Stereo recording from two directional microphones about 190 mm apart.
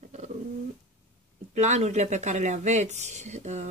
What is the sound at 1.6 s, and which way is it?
Speech, 35° right (ahead or behind).